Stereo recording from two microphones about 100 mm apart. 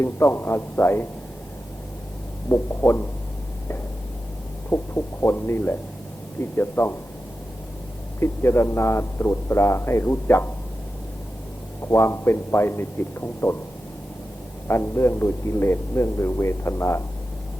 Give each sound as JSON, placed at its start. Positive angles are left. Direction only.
{"t": 0.0, "sound": "speech", "side_deg": 25}
{"t": 2.5, "sound": "speech", "side_deg": 25}
{"t": 4.7, "sound": "speech", "side_deg": 25}
{"t": 8.2, "sound": "speech", "side_deg": 25}
{"t": 11.9, "sound": "speech", "side_deg": 25}
{"t": 14.7, "sound": "speech", "side_deg": 25}